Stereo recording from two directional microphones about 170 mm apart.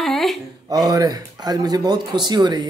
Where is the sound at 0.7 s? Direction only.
25° right (ahead or behind).